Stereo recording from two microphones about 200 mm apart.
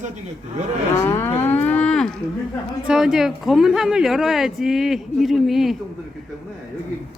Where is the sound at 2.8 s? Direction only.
5° right (ahead or behind).